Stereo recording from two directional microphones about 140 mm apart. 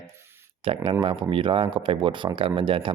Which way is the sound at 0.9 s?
40° right (ahead or behind).